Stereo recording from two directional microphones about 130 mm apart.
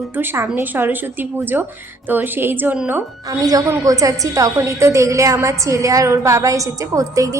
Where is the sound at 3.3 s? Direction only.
30° right (ahead or behind).